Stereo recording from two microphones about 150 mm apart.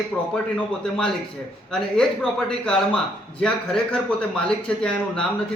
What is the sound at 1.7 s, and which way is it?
A man's voice, 5° left (ahead or behind).